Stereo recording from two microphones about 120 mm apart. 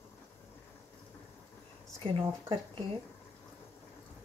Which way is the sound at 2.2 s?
45° right (ahead or behind).